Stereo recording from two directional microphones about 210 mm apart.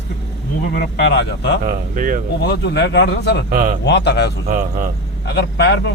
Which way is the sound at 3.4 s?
40° right (ahead or behind).